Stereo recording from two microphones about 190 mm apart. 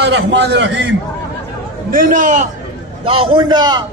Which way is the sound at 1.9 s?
45° right (ahead or behind).